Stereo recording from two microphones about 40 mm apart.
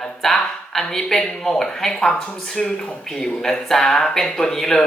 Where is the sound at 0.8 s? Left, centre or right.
Centre.